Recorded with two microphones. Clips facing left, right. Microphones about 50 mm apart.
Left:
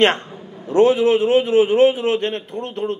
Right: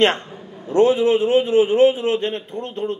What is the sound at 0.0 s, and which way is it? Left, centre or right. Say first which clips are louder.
Speech: left 1 dB; left.